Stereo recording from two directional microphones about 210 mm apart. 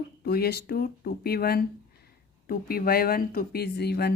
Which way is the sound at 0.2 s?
50° left (ahead or behind).